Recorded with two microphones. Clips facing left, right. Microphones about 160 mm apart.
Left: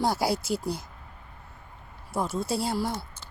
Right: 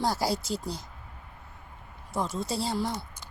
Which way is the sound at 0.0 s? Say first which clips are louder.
Left 2 dB; 10° left (ahead or behind).